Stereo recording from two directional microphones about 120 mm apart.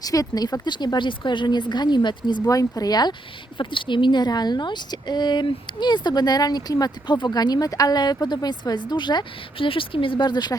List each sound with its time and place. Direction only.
0.0 s speech: 30° left (ahead or behind)